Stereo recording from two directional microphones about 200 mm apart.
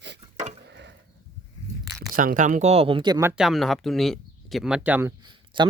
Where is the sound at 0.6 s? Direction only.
60° right (ahead or behind).